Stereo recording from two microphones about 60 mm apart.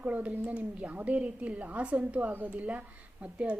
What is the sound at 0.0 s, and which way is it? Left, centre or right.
Speech, right.